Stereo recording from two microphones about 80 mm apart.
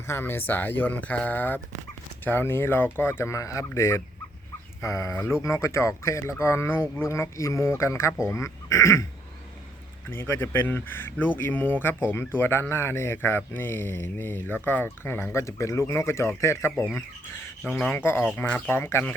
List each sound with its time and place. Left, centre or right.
0.1 s speech: left
10.1 s speech: left
17.9 s speech: left
18.4 s speech: centre
18.7 s speech: left